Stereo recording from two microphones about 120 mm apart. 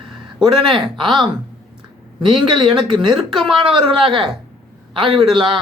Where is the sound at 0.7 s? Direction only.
40° right (ahead or behind).